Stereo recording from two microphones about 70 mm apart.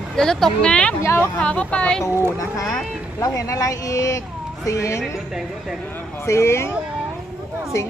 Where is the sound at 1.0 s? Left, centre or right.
Left.